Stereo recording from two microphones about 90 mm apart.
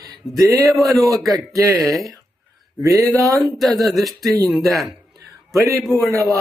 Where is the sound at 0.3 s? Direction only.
40° right (ahead or behind).